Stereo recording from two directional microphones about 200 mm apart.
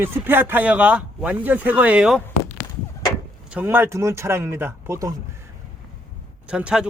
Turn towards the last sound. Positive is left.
turn(degrees=-5)  # may be behind; listen again after turning